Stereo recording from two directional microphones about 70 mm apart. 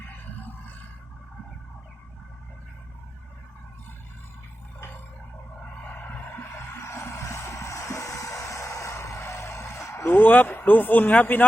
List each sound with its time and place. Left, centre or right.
5.6 s music: left
10.1 s speech: left